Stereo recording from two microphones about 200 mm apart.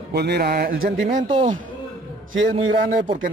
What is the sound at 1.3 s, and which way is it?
Speech, 35° right (ahead or behind).